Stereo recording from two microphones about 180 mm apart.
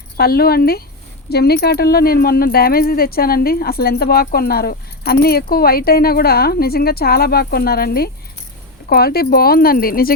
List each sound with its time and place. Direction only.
0.2 s speech: 60° left (ahead or behind)